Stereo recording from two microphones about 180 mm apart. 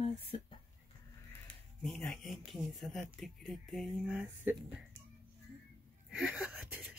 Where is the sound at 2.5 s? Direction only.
Centre (ahead or behind).